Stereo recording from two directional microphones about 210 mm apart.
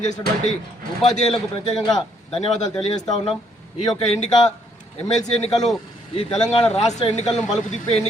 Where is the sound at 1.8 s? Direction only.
20° left (ahead or behind).